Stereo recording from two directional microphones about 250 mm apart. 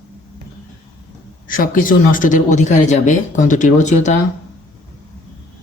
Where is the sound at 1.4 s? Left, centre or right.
Left.